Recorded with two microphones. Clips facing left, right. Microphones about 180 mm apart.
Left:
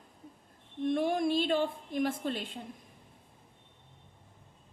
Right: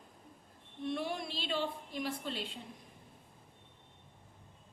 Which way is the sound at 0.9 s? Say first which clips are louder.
Left 9 dB; 50° left (ahead or behind).